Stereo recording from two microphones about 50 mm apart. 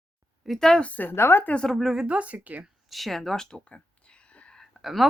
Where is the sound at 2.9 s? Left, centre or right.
Centre.